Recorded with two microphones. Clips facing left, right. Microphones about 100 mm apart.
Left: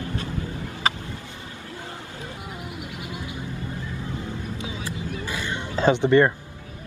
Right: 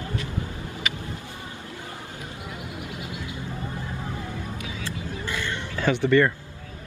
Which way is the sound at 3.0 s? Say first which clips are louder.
Left 1 dB; 20° left (ahead or behind).